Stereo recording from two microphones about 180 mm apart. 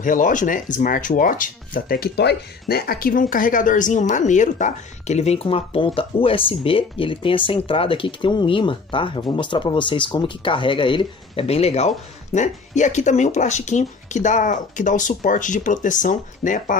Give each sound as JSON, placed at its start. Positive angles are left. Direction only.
{"t": 0.0, "sound": "speech", "side_deg": 45}